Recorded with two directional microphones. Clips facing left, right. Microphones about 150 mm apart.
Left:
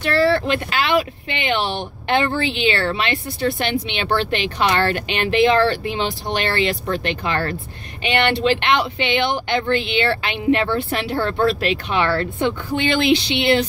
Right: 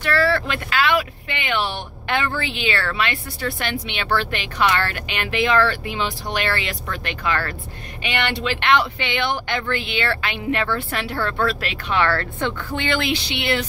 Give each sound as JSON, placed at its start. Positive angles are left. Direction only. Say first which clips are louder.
{"t": 0.0, "sound": "speech", "louder": "left 3 dB", "side_deg": 25}